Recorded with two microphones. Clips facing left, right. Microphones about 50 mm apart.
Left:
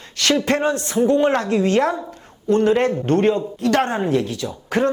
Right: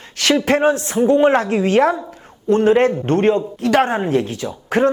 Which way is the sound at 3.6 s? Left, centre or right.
Centre.